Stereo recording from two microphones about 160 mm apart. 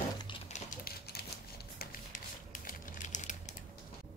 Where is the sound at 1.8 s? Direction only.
60° left (ahead or behind).